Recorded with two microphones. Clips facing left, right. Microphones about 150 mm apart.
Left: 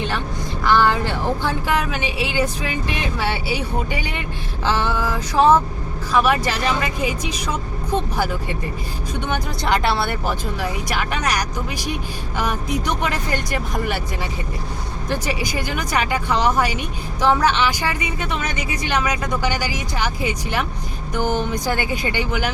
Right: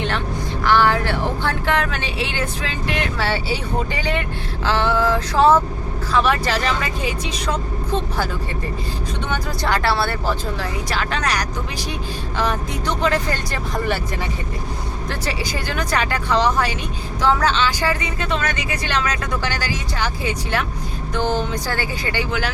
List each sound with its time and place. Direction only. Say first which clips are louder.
0.6 s speech: even; 15° left (ahead or behind)
9.3 s speech: left 1 dB; 20° left (ahead or behind)
13.0 s speech: right 3 dB; 15° left (ahead or behind)
15.1 s speech: left 3 dB; 15° left (ahead or behind)